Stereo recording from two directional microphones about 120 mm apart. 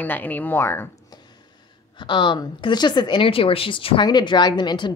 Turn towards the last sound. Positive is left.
turn(degrees=40)  # may be behind; listen again after turning